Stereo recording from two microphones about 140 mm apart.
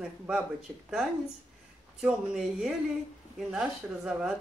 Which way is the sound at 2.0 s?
5° right (ahead or behind).